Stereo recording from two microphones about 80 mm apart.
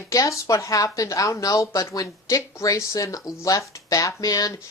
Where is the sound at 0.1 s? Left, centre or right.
Left.